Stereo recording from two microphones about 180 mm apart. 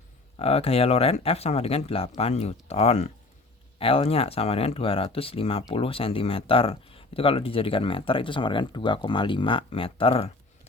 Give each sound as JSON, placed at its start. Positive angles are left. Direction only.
{"t": 0.3, "sound": "speech", "side_deg": 35}